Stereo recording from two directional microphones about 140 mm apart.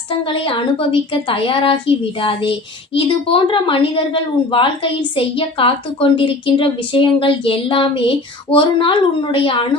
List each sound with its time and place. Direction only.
0.4 s a woman's voice: 40° left (ahead or behind)